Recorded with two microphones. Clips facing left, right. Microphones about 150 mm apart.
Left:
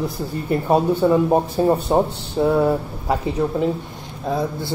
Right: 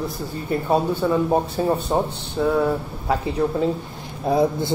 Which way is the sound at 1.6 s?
20° left (ahead or behind).